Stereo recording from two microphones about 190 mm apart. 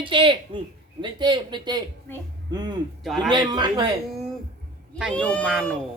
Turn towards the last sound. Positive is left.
turn(degrees=5)  # may be behind; listen again after turning